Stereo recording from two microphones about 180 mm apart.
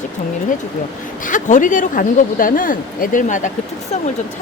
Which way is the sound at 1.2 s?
45° left (ahead or behind).